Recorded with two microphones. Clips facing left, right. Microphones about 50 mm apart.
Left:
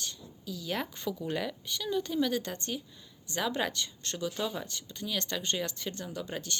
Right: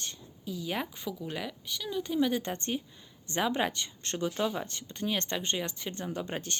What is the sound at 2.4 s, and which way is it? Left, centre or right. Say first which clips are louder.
Speech: right 3 dB; right.